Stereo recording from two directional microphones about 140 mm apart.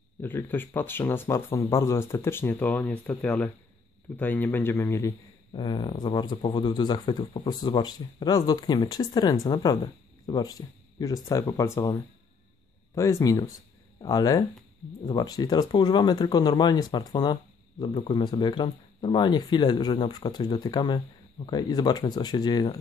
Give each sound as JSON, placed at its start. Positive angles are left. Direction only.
{"t": 0.2, "sound": "speech", "side_deg": 15}
{"t": 5.5, "sound": "speech", "side_deg": 30}